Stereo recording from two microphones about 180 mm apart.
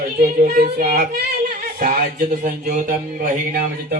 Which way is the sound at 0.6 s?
60° right (ahead or behind).